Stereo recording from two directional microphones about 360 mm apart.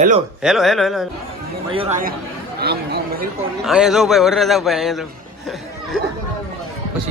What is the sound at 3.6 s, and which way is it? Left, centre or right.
A man's voice, centre.